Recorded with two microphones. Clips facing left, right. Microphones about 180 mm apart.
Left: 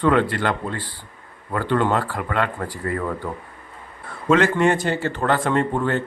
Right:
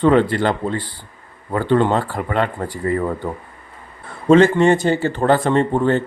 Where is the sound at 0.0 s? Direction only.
30° right (ahead or behind).